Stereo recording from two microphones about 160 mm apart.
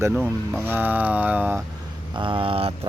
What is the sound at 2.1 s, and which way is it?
Speech, 35° right (ahead or behind).